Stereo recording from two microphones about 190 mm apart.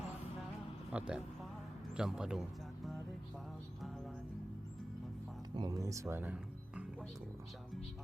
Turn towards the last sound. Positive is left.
turn(degrees=-5)  # may be behind; listen again after turning